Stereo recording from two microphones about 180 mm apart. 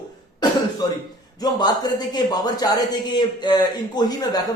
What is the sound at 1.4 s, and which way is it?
A man's voice, 20° left (ahead or behind).